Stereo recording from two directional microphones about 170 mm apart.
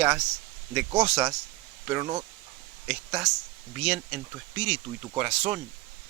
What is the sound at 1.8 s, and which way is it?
Speech, 20° right (ahead or behind).